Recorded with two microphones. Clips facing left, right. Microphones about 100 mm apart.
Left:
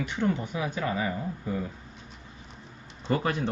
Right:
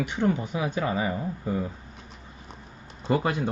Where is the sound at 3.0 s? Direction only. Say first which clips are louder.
Right 2 dB; 15° right (ahead or behind).